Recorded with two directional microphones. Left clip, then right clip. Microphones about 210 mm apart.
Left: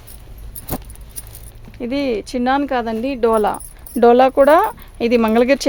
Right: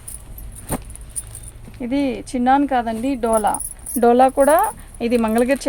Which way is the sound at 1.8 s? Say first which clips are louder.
Left 2 dB; 50° left (ahead or behind).